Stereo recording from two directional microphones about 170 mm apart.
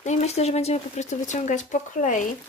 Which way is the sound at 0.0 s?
40° left (ahead or behind).